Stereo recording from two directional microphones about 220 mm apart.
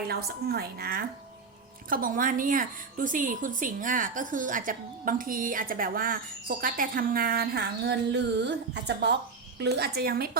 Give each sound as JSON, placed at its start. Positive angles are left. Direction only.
{"t": 0.1, "sound": "a woman's voice", "side_deg": -45}